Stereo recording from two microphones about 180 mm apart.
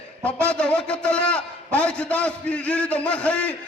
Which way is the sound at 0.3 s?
5° left (ahead or behind).